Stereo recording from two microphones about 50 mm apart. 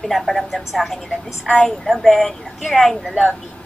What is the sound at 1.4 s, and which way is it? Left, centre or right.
Speech, left.